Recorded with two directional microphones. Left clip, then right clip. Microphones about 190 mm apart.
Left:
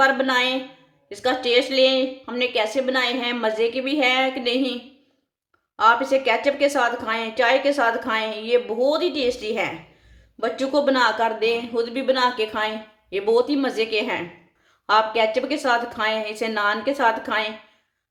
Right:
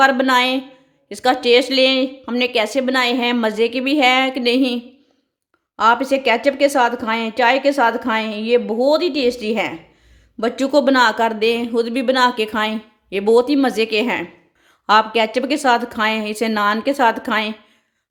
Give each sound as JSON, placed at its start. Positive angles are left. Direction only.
{"t": 0.0, "sound": "a woman's voice", "side_deg": -50}